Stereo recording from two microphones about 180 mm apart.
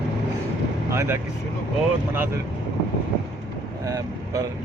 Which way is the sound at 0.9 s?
15° right (ahead or behind).